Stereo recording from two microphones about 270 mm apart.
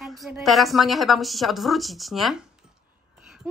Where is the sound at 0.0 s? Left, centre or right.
Centre.